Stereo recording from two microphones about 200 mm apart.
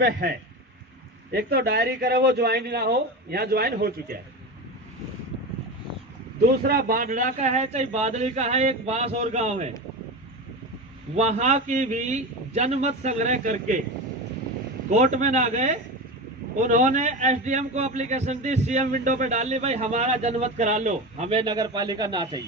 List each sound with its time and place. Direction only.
0.0 s a man's voice: 50° right (ahead or behind)
6.4 s a man's voice: 50° right (ahead or behind); by 9.7 s 35° right (ahead or behind)
11.2 s a man's voice: 35° right (ahead or behind)
14.9 s a man's voice: 35° right (ahead or behind)